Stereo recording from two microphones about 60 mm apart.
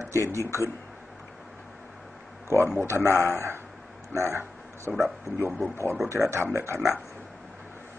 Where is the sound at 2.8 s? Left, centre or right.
Right.